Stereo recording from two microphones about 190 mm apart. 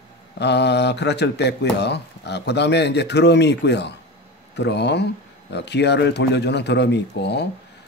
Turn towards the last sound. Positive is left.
turn(degrees=60)  # may be behind; listen again after turning